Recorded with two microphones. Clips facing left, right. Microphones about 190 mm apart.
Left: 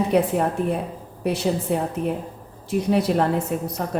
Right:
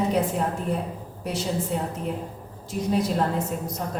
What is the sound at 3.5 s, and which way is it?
Speech, 60° left (ahead or behind).